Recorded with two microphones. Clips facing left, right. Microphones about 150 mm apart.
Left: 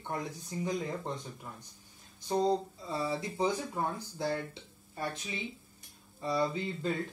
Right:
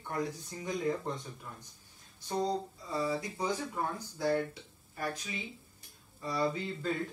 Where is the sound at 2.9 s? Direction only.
25° left (ahead or behind).